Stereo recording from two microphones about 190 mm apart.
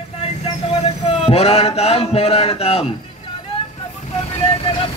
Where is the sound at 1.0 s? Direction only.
30° left (ahead or behind).